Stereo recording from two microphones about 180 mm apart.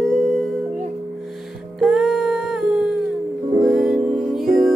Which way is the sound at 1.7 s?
Centre (ahead or behind).